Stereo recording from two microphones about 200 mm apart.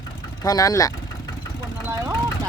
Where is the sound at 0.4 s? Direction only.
15° left (ahead or behind).